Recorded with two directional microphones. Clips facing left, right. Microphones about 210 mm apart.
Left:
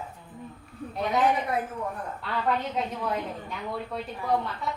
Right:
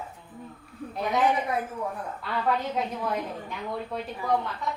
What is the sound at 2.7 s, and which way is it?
A woman's voice, centre (ahead or behind).